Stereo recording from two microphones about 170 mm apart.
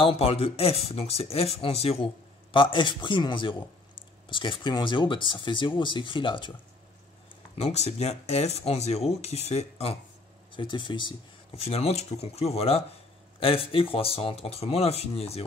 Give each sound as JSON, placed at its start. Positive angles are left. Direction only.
{"t": 0.0, "sound": "speech", "side_deg": 35}
{"t": 7.5, "sound": "speech", "side_deg": 40}